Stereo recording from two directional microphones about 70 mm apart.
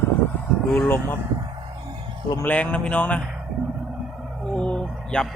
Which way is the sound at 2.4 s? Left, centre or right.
Left.